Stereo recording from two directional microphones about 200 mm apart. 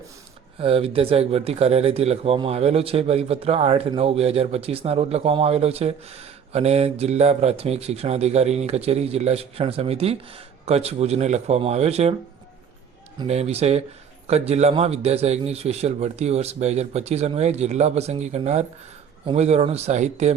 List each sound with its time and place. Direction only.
0.6 s speech: 30° right (ahead or behind)
13.1 s speech: 30° right (ahead or behind)